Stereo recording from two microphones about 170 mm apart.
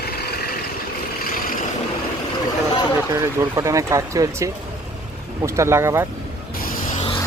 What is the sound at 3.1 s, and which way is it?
Speech, 15° right (ahead or behind).